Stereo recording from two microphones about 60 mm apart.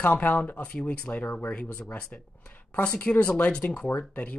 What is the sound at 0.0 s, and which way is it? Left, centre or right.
Speech, left.